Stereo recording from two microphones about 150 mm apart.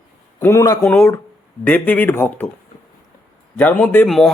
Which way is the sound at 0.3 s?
20° left (ahead or behind).